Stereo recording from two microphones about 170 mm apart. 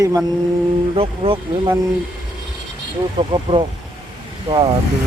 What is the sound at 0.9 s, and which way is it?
Speech, 30° right (ahead or behind).